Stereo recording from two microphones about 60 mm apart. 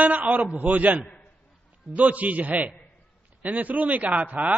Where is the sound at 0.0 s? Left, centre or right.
Right.